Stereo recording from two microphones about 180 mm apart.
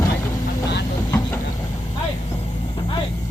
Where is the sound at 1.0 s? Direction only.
15° left (ahead or behind).